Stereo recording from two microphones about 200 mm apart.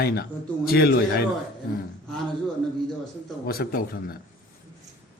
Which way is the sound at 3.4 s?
50° left (ahead or behind).